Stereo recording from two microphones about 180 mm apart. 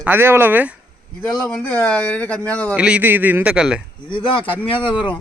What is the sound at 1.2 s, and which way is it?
A man's voice, 5° left (ahead or behind).